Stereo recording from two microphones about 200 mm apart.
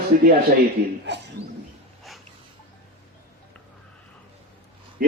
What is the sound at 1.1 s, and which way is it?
Speech, 60° right (ahead or behind).